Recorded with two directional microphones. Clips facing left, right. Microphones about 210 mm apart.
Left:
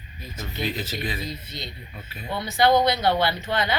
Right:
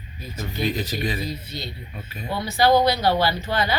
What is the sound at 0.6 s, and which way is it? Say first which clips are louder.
Speech: right 4 dB; 15° right (ahead or behind).